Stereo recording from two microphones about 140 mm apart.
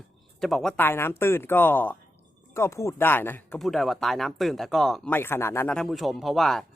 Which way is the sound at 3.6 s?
Centre (ahead or behind).